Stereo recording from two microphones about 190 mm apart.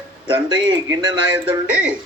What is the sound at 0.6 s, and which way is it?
Speech, 20° right (ahead or behind).